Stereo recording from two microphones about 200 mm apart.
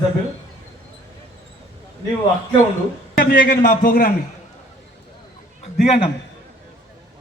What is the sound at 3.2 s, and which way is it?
Speech, 45° left (ahead or behind).